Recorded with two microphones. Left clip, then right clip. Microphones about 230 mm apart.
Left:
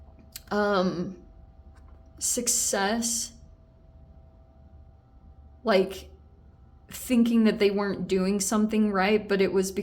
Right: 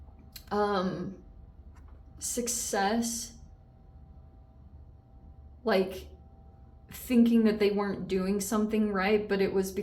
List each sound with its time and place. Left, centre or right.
0.3 s speech: left
2.1 s a woman's voice: left
5.6 s a woman's voice: left